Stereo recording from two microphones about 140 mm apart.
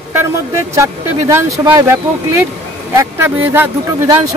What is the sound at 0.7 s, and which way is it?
Speech, 20° right (ahead or behind).